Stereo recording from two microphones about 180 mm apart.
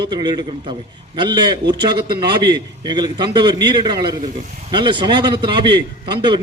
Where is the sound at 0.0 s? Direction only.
25° right (ahead or behind).